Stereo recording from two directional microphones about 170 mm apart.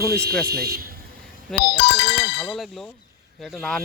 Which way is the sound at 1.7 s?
80° left.